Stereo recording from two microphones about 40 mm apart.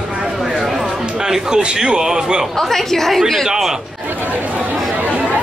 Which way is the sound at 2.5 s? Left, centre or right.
Centre.